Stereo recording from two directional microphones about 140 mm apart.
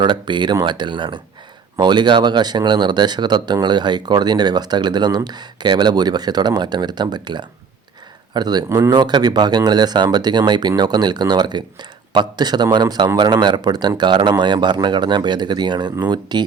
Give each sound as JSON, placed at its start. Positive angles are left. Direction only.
{"t": 0.0, "sound": "speech", "side_deg": -35}